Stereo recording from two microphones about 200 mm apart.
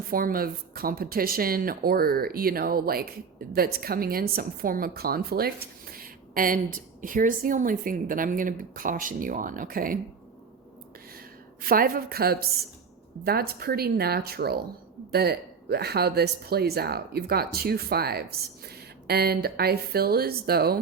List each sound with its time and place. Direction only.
0.1 s speech: 45° right (ahead or behind)
11.6 s speech: 45° right (ahead or behind)